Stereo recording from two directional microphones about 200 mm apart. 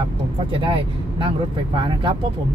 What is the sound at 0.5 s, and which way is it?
Speech, 25° right (ahead or behind).